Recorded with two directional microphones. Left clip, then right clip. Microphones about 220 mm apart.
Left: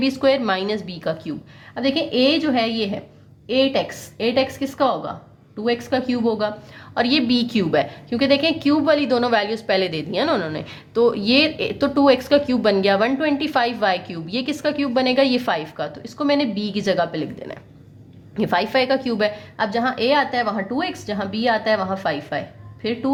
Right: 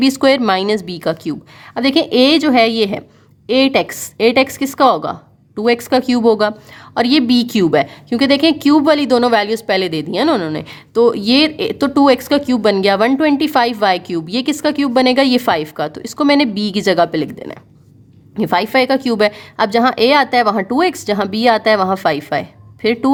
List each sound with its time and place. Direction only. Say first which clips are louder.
0.0 s a woman's voice: right 6 dB; 40° right (ahead or behind)